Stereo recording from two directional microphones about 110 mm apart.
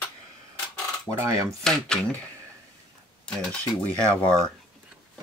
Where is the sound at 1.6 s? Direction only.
5° left (ahead or behind).